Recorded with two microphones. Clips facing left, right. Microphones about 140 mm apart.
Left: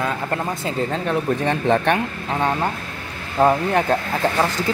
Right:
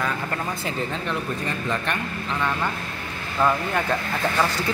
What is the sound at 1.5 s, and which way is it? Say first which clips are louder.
Speech: left 11 dB; 65° left (ahead or behind).